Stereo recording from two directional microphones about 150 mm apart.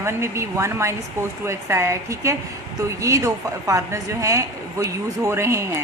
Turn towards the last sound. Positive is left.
turn(degrees=-20)  # may be behind; listen again after turning